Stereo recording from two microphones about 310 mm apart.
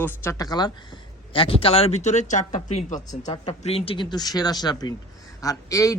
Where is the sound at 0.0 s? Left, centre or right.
Centre.